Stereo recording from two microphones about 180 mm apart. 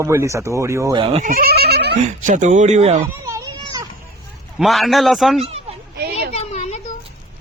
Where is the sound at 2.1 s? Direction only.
45° right (ahead or behind).